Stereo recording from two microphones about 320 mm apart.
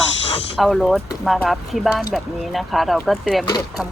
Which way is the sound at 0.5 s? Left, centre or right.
Centre.